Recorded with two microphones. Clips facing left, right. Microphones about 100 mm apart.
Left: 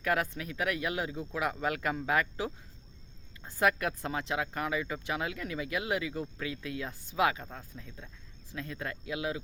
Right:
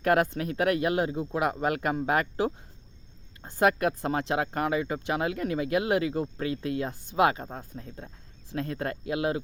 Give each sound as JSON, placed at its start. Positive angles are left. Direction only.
{"t": 0.0, "sound": "speech", "side_deg": -60}
{"t": 3.6, "sound": "speech", "side_deg": -35}
{"t": 4.3, "sound": "speech", "side_deg": -50}
{"t": 7.4, "sound": "speech", "side_deg": -30}
{"t": 7.8, "sound": "speech", "side_deg": -45}
{"t": 8.5, "sound": "speech", "side_deg": -55}